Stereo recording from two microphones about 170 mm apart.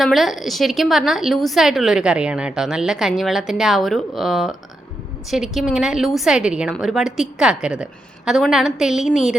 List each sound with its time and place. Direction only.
0.0 s speech: centre (ahead or behind)